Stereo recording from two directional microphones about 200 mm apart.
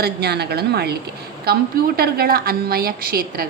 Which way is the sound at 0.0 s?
55° right (ahead or behind).